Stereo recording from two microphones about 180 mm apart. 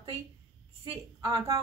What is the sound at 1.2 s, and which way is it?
Speech, 15° right (ahead or behind).